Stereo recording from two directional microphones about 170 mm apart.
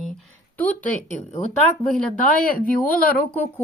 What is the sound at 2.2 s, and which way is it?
Speech, 55° left (ahead or behind).